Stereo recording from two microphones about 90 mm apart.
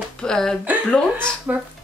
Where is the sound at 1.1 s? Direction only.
20° right (ahead or behind).